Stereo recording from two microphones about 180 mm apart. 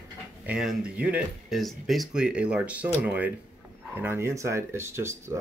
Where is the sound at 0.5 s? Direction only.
5° right (ahead or behind).